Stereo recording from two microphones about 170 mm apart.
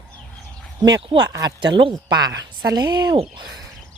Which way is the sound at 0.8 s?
30° right (ahead or behind).